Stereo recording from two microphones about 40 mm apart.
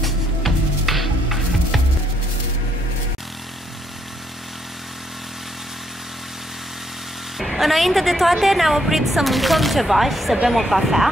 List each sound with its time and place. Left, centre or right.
0.0 s music: centre
7.3 s a woman's voice: centre